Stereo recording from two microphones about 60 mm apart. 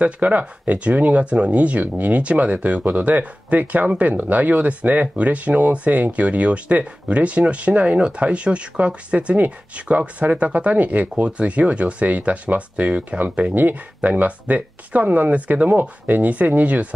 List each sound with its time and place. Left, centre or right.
0.0 s speech: right